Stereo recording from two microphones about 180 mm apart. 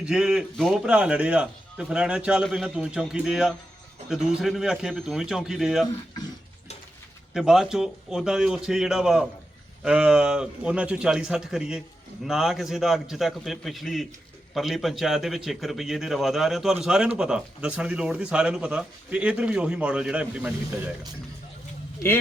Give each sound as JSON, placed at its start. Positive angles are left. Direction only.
{"t": 0.0, "sound": "speech", "side_deg": -5}
{"t": 7.3, "sound": "speech", "side_deg": -5}